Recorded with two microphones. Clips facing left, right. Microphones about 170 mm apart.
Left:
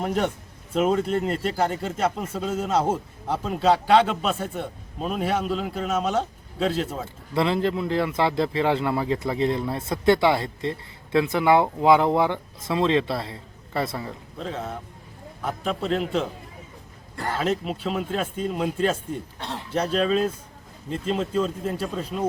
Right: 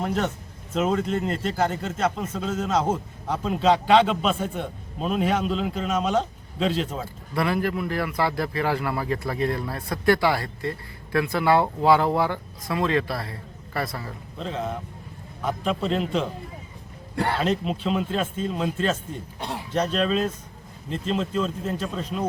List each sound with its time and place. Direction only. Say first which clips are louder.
0.0 s a man's voice: left 1 dB; 5° left (ahead or behind)
7.3 s speech: left 2 dB; 25° left (ahead or behind)
14.3 s a man's voice: right 2 dB; 5° left (ahead or behind)
17.4 s a man's voice: right 1 dB; 5° left (ahead or behind)
19.4 s a sound: right 1 dB; 10° right (ahead or behind)
19.7 s a man's voice: left 1 dB; 5° left (ahead or behind)